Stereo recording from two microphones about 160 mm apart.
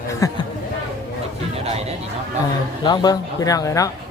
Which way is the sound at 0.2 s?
20° left (ahead or behind).